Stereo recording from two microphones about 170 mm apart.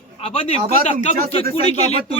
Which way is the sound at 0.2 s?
35° left (ahead or behind).